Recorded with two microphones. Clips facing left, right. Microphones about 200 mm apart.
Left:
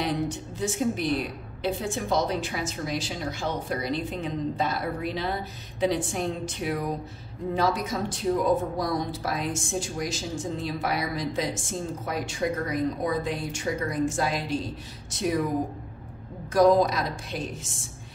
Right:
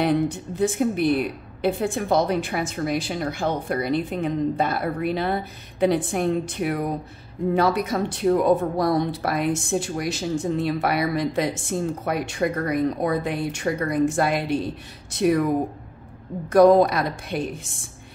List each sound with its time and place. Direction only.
0.0 s speech: 55° right (ahead or behind)
16.5 s speech: 60° right (ahead or behind)